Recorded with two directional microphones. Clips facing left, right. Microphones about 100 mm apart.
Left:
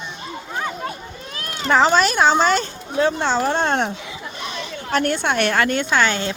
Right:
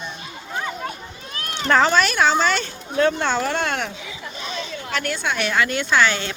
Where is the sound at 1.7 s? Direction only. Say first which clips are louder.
Left 2 dB; 15° left (ahead or behind).